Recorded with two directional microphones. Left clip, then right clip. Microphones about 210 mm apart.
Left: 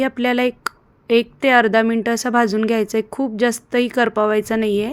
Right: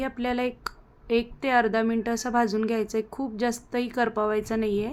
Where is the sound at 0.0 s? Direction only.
20° left (ahead or behind).